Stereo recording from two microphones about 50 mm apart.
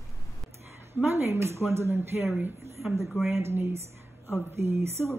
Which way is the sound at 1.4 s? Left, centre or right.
Right.